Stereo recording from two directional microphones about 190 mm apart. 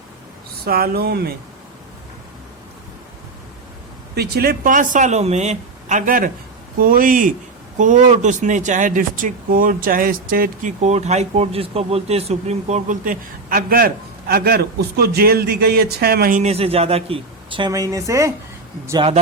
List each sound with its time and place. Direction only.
0.6 s speech: 55° right (ahead or behind)
4.1 s speech: 55° right (ahead or behind)
16.4 s speech: 35° right (ahead or behind); by 18.3 s 15° right (ahead or behind)